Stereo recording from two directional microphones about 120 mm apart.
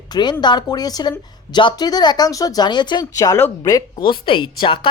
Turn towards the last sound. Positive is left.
turn(degrees=45)  # may be behind; listen again after turning